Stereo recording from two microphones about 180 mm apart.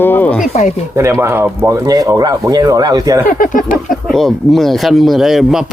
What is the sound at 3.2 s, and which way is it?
Speech, 50° left (ahead or behind).